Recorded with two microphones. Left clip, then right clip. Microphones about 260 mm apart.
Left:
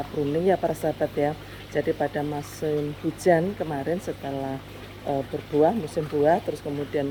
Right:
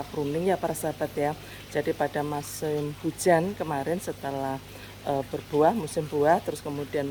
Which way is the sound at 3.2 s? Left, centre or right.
Centre.